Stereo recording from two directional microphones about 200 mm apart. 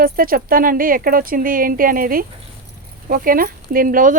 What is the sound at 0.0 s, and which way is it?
Speech, 45° right (ahead or behind).